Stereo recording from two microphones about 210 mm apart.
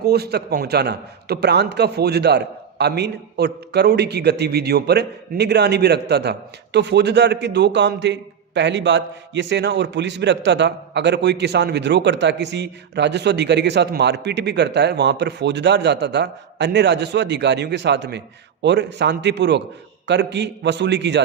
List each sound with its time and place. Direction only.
0.0 s a man's voice: 50° right (ahead or behind)